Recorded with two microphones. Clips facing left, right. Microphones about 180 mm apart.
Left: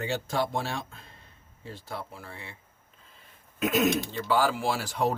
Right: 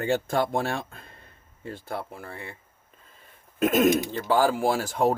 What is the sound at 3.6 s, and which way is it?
Speech, 50° right (ahead or behind).